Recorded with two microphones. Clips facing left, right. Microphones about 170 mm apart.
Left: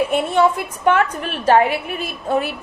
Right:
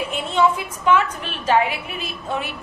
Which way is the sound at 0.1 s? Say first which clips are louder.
Left 3 dB; 55° left (ahead or behind).